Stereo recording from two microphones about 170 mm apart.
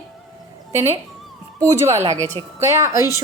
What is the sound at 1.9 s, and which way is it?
Speech, 40° right (ahead or behind).